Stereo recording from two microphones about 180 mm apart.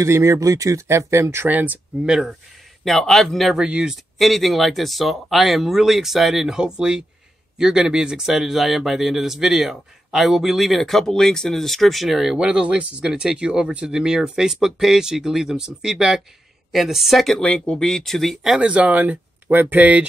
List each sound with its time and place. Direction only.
0.0 s speech: 15° right (ahead or behind)